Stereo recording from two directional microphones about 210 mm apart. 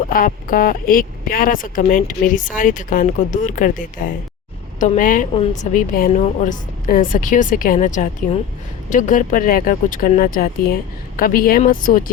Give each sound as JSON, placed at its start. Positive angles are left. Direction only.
{"t": 0.1, "sound": "speech", "side_deg": 40}